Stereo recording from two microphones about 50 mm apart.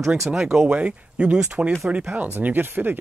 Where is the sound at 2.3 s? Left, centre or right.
Right.